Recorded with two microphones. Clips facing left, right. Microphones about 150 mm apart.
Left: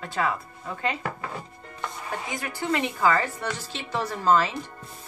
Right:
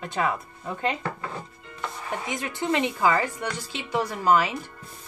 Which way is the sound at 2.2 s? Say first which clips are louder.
Right 3 dB; 20° right (ahead or behind).